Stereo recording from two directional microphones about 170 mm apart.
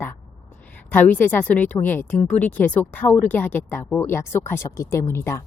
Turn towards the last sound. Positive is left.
turn(degrees=15)  # may be behind; listen again after turning